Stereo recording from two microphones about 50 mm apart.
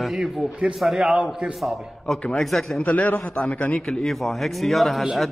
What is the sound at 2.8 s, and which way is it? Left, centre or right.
Speech, left.